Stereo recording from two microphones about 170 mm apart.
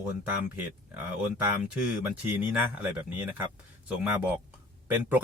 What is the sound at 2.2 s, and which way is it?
Speech, 10° right (ahead or behind).